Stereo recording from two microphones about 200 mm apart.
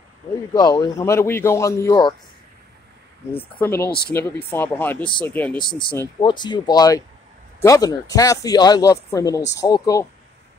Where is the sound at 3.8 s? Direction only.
50° left (ahead or behind).